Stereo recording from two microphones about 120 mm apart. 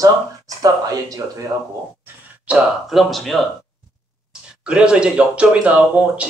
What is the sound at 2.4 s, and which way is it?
Speech, 5° right (ahead or behind).